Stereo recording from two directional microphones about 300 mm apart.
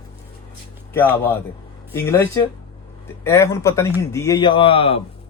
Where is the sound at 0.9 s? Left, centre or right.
Centre.